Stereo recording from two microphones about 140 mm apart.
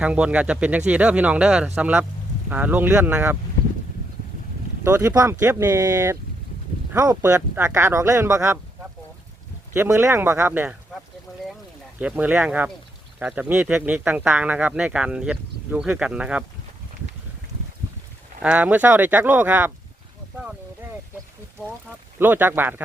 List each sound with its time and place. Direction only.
0.0 s speech: 10° right (ahead or behind)
4.8 s speech: 20° right (ahead or behind)
9.7 s speech: 20° right (ahead or behind)
11.9 s speech: 10° right (ahead or behind)
18.4 s speech: 10° right (ahead or behind)
22.2 s speech: 15° right (ahead or behind)